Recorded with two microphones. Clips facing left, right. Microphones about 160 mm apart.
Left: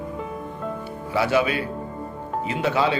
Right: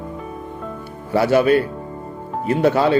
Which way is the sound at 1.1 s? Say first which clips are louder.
Right 7 dB; 50° right (ahead or behind).